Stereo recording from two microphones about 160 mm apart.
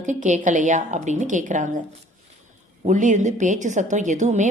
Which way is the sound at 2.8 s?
50° right (ahead or behind).